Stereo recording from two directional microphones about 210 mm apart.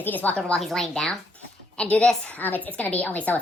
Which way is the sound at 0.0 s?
10° left (ahead or behind).